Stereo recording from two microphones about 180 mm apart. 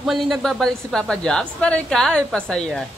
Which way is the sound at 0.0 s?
Centre (ahead or behind).